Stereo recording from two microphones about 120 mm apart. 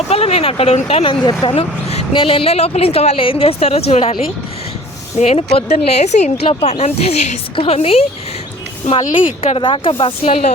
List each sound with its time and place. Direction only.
0.1 s a woman's voice: 60° left (ahead or behind)
1.3 s speech: 35° left (ahead or behind)
1.5 s speech: 60° left (ahead or behind)
2.1 s a woman's voice: 50° left (ahead or behind)
5.1 s a woman's voice: 60° left (ahead or behind)
7.5 s speech: 50° left (ahead or behind)
9.6 s speech: 45° left (ahead or behind)